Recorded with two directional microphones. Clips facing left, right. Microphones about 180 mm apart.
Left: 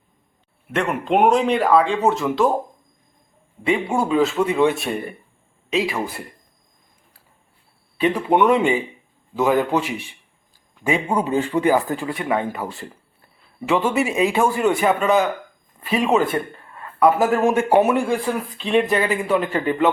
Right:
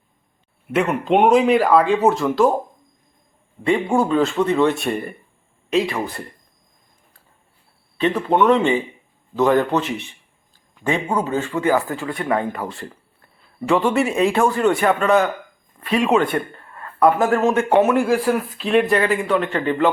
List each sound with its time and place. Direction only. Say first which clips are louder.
0.7 s speech: right 2 dB; 5° right (ahead or behind)
3.6 s speech: right 2 dB; 5° left (ahead or behind)
7.9 s speech: even; 10° left (ahead or behind)
12.1 s speech: right 3 dB; 5° left (ahead or behind)
17.9 s speech: right 3 dB; 5° right (ahead or behind)